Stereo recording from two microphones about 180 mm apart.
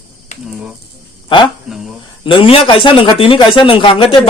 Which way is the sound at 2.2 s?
30° left (ahead or behind).